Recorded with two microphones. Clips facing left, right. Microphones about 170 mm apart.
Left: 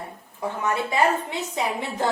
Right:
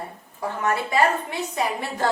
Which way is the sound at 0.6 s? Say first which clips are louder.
Right 1 dB; 20° left (ahead or behind).